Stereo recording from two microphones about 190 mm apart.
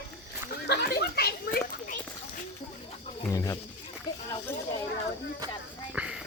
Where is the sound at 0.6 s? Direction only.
60° left (ahead or behind).